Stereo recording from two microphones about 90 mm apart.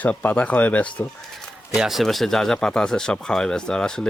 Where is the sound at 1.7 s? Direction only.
5° right (ahead or behind).